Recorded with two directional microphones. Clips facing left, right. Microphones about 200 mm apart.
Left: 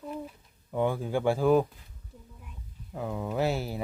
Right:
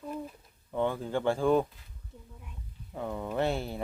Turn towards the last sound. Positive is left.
turn(degrees=5)  # may be behind; listen again after turning